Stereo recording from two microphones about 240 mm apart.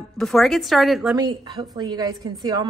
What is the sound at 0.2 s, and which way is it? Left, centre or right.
Speech, centre.